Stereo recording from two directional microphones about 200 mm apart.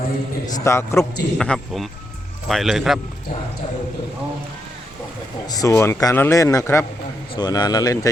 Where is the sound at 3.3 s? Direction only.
45° left (ahead or behind).